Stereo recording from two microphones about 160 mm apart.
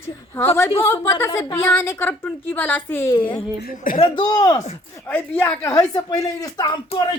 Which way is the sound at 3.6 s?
60° left (ahead or behind).